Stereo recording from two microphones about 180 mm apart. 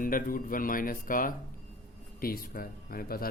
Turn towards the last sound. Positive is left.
turn(degrees=55)  # may be behind; listen again after turning